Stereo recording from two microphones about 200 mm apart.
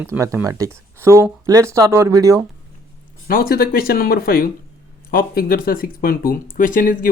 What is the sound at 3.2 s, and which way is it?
Speech, 45° left (ahead or behind).